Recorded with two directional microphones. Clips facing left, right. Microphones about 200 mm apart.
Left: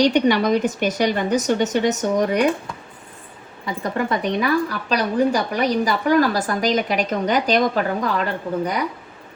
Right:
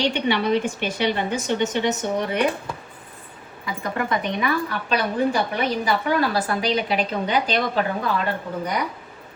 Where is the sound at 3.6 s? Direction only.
40° left (ahead or behind).